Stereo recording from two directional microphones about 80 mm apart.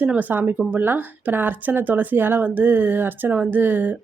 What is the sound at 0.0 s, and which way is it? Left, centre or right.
Speech, right.